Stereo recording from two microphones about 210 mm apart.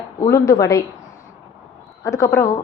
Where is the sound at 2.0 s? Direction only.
15° left (ahead or behind).